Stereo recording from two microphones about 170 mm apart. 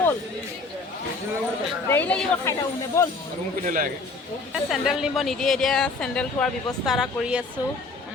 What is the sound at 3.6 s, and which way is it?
Speech, 50° right (ahead or behind).